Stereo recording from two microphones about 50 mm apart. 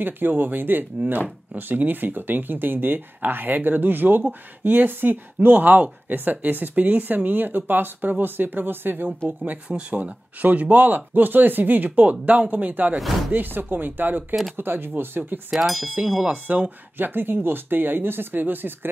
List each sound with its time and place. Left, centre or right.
0.0 s speech: right
9.4 s speech: right
16.0 s speech: right
17.0 s speech: right